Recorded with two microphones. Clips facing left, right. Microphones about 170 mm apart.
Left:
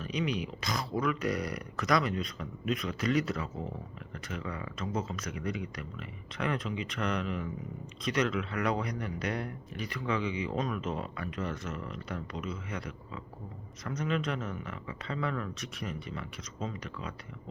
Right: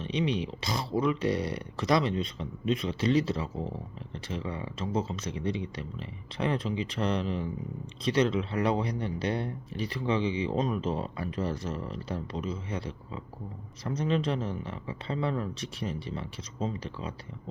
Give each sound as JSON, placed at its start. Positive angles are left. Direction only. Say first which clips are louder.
{"t": 0.0, "sound": "speech", "louder": "right 3 dB", "side_deg": -30}